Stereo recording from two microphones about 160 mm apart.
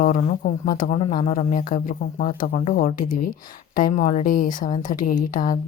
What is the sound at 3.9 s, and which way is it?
Speech, 40° left (ahead or behind).